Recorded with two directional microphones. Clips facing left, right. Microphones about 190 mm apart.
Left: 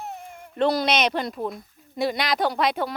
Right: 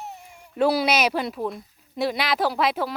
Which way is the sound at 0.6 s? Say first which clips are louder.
Right 1 dB; 5° right (ahead or behind).